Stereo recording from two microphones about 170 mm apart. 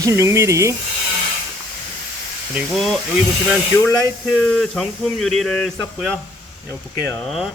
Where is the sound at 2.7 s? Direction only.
Centre (ahead or behind).